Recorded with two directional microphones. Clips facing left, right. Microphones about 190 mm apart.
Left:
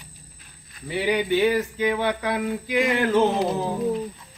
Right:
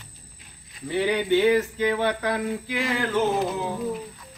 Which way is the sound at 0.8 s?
15° left (ahead or behind).